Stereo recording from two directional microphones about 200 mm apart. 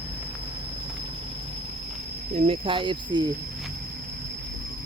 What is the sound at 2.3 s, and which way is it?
Speech, 25° right (ahead or behind).